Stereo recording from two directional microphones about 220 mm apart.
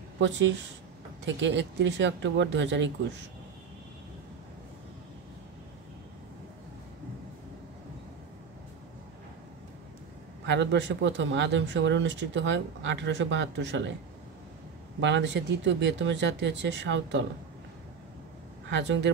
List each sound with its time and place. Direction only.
0.2 s speech: 55° right (ahead or behind)
10.4 s speech: 55° right (ahead or behind)
15.0 s speech: 55° right (ahead or behind)
18.7 s speech: 55° right (ahead or behind)